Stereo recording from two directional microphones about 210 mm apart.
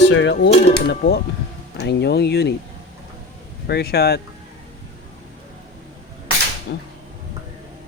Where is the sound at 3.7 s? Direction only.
50° left (ahead or behind).